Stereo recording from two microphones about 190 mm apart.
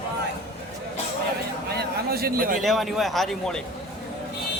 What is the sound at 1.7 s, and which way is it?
Speech, 55° right (ahead or behind).